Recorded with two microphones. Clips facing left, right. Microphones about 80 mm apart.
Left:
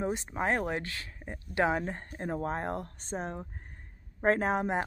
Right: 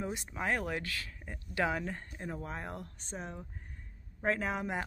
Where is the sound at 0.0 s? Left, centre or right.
Left.